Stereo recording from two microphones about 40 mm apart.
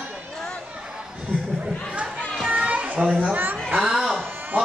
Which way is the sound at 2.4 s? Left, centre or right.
Right.